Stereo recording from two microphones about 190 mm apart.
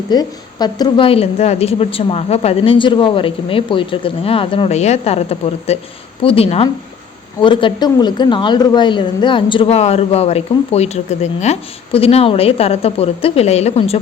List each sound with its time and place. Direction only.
0.1 s a woman's voice: 20° left (ahead or behind)